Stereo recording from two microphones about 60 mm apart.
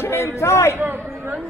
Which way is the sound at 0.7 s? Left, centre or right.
Right.